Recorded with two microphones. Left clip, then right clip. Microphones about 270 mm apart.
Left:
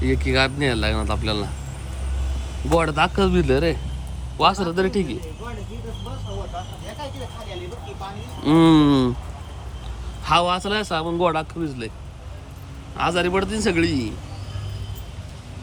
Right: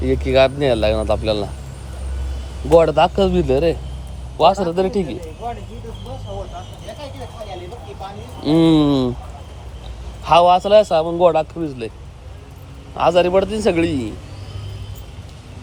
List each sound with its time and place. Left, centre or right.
0.0 s a man's voice: centre
2.6 s a man's voice: centre
8.4 s a man's voice: centre
10.2 s a man's voice: centre
13.0 s a man's voice: centre